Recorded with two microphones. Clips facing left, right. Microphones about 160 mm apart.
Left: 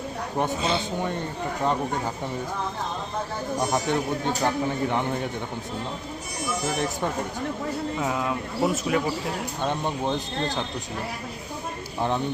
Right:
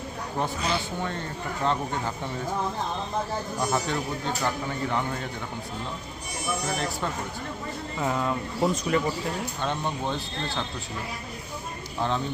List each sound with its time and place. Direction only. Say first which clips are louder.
0.3 s speech: left 3 dB; 25° left (ahead or behind)
3.6 s speech: left 3 dB; 20° left (ahead or behind)
7.7 s speech: right 1 dB; centre (ahead or behind)
9.6 s speech: left 5 dB; 15° left (ahead or behind)
11.9 s speech: left 2 dB; 15° left (ahead or behind)